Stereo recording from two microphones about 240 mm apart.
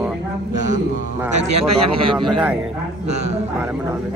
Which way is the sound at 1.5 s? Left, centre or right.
Right.